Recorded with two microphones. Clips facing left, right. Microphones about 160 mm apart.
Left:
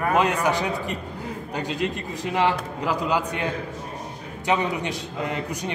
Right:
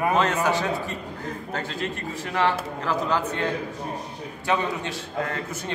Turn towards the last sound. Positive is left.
turn(degrees=15)  # may be behind; listen again after turning